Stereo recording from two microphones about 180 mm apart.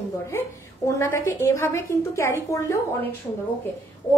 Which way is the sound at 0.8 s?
15° left (ahead or behind).